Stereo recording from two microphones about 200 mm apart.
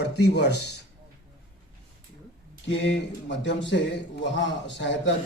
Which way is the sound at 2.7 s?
60° left (ahead or behind).